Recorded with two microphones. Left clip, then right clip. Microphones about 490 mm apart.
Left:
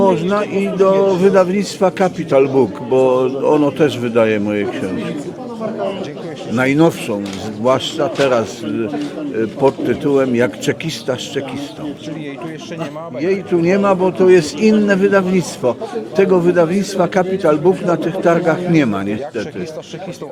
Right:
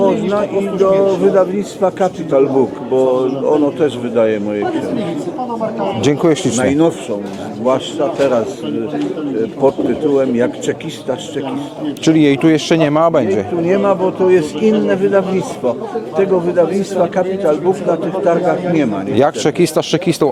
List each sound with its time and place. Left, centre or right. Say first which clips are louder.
0.1 s speech: right 1 dB; left
2.9 s speech: left 1 dB; left
6.0 s speech: right 13 dB; right
6.6 s speech: even; left
10.2 s speech: right 1 dB; left
12.0 s speech: right 16 dB; right
13.2 s a man's voice: even; left
16.1 s speech: left 1 dB; left
19.2 s speech: right 11 dB; right